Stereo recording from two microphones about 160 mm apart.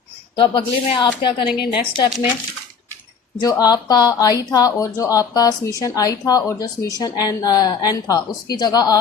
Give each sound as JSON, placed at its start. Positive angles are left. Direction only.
{"t": 0.3, "sound": "speech", "side_deg": 30}
{"t": 3.4, "sound": "speech", "side_deg": 25}